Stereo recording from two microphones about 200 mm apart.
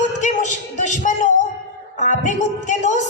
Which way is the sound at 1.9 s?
40° left (ahead or behind).